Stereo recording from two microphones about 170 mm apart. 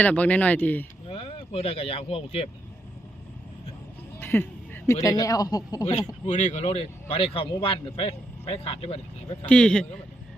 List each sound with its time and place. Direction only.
0.0 s speech: 10° left (ahead or behind)
1.1 s speech: 35° left (ahead or behind)
4.2 s a sound: 10° left (ahead or behind)
5.0 s speech: 20° left (ahead or behind)
6.2 s speech: 45° left (ahead or behind)
9.5 s speech: 5° left (ahead or behind)